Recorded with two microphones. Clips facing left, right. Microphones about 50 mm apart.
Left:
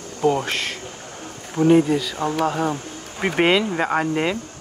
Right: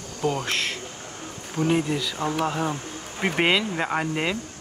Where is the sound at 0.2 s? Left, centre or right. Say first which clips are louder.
Left 6 dB; centre.